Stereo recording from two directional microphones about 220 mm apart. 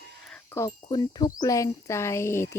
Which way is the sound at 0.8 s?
20° left (ahead or behind).